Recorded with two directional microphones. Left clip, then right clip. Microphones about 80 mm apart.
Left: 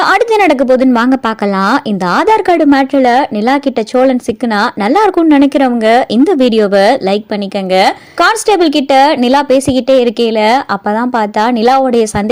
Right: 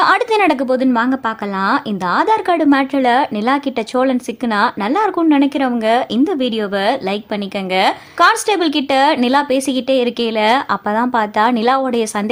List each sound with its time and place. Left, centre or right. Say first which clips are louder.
0.0 s speech: left 4 dB; left
0.9 s a woman's voice: left 5 dB; left
7.7 s a woman's voice: left 6 dB; left